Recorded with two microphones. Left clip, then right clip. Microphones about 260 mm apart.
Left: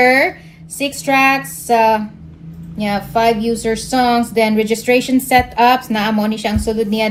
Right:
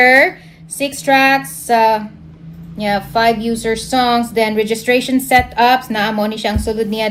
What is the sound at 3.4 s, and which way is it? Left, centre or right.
Speech, right.